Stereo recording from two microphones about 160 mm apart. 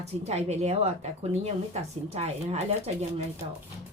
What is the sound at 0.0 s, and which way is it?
Speech, 40° right (ahead or behind).